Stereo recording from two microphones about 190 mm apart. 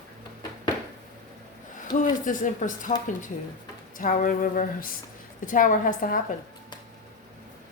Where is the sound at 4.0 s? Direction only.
45° left (ahead or behind).